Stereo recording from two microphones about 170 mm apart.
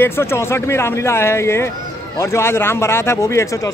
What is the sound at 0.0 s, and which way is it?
Speech, 15° left (ahead or behind).